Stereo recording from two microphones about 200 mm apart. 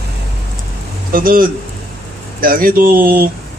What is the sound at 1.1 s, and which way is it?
A man's voice, 45° right (ahead or behind).